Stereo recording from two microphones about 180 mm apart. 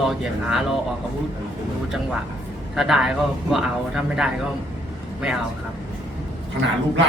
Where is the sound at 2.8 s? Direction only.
Centre (ahead or behind).